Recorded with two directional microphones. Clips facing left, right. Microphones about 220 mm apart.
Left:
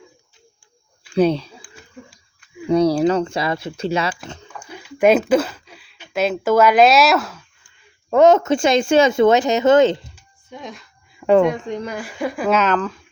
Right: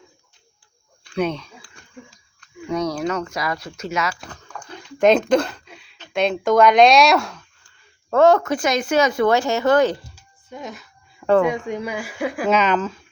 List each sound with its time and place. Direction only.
1.1 s speech: 30° left (ahead or behind)
1.7 s a sound: 10° left (ahead or behind)
2.6 s speech: 30° left (ahead or behind)
4.5 s speech: 5° left (ahead or behind)
8.1 s speech: 20° left (ahead or behind)
10.5 s speech: 5° right (ahead or behind)